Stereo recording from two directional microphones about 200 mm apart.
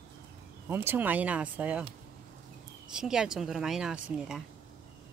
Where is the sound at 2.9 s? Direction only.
5° right (ahead or behind).